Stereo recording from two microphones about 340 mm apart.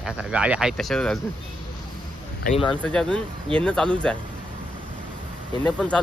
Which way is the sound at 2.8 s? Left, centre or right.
Centre.